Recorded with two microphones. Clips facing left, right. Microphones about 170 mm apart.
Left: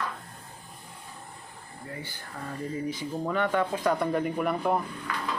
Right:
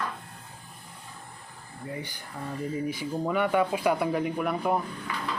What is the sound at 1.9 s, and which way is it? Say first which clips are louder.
Speech: right 2 dB; 15° right (ahead or behind).